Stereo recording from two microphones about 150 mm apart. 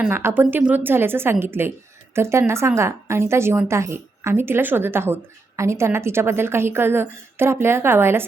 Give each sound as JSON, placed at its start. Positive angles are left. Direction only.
{"t": 0.0, "sound": "a woman's voice", "side_deg": -15}